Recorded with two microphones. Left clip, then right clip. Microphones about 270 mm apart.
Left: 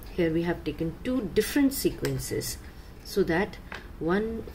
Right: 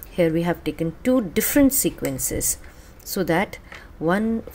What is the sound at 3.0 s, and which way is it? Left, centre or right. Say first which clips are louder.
Speech: right 4 dB; right.